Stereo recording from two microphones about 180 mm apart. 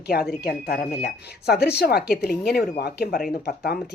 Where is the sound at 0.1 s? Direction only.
60° left (ahead or behind).